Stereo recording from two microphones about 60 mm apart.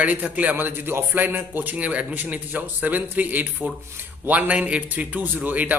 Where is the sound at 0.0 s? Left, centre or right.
Right.